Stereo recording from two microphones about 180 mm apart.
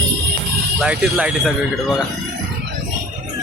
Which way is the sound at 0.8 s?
5° right (ahead or behind).